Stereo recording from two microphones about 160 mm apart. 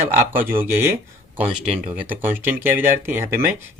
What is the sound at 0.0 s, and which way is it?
Speech, 15° right (ahead or behind).